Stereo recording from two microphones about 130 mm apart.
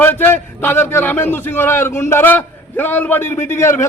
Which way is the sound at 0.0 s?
15° left (ahead or behind).